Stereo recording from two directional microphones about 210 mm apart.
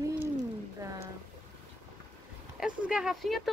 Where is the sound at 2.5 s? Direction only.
5° right (ahead or behind).